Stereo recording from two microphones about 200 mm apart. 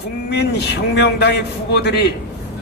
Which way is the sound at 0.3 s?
55° left (ahead or behind).